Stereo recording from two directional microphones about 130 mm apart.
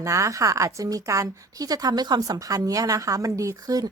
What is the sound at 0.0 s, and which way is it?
A woman's voice, 25° right (ahead or behind).